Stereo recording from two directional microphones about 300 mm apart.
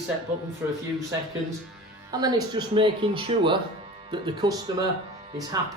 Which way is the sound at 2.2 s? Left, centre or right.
Centre.